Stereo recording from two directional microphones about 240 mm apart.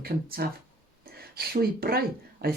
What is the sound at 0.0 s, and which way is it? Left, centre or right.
Speech, right.